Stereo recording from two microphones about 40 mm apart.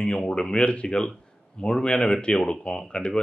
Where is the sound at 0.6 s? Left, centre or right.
Left.